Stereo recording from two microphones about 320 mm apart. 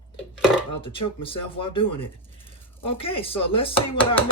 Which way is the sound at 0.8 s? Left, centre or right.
Centre.